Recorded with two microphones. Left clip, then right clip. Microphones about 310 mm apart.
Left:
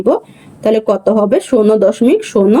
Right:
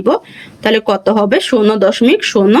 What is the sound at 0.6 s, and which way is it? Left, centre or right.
Speech, right.